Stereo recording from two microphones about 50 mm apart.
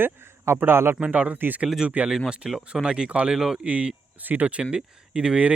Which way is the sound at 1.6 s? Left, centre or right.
Centre.